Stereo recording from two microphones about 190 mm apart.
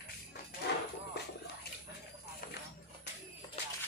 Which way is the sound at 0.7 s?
65° left (ahead or behind).